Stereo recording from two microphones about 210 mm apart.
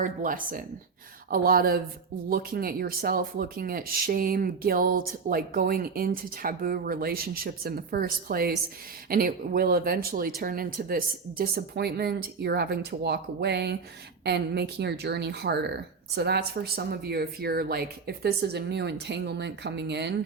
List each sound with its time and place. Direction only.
0.0 s speech: 40° right (ahead or behind)